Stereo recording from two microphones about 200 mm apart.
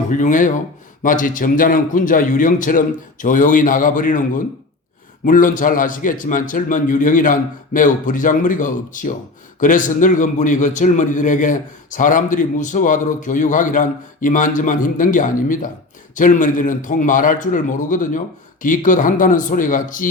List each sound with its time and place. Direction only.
0.1 s a man's voice: 40° left (ahead or behind)
5.2 s a man's voice: 40° left (ahead or behind)